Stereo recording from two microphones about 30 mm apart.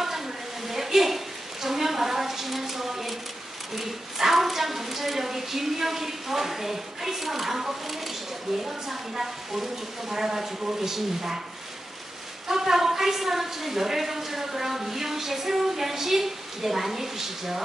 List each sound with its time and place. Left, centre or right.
0.7 s a sound: centre
8.6 s a woman's voice: centre
12.4 s a woman's voice: centre